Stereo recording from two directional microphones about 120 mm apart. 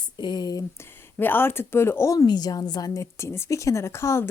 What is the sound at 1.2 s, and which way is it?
Speech, 15° left (ahead or behind).